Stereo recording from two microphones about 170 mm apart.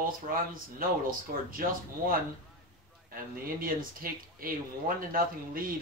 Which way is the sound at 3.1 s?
55° right (ahead or behind).